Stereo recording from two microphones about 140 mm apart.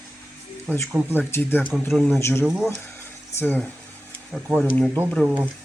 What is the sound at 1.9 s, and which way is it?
Speech, centre (ahead or behind).